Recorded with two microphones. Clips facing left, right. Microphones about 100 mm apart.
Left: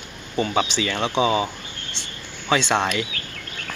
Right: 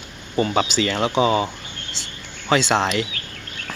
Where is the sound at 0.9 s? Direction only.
10° right (ahead or behind).